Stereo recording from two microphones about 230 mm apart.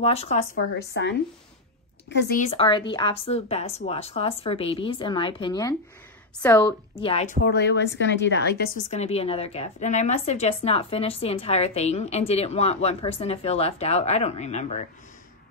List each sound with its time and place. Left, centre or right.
0.0 s speech: left
0.7 s a woman's voice: left; by 6.7 s centre
7.0 s speech: left
7.4 s a woman's voice: left
8.9 s speech: left